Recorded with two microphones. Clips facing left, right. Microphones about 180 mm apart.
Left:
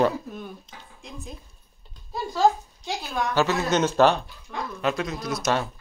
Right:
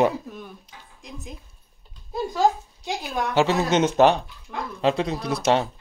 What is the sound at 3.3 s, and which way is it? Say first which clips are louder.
Speech: right 3 dB; 25° right (ahead or behind).